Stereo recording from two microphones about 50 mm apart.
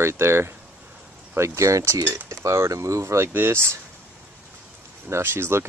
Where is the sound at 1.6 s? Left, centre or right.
Right.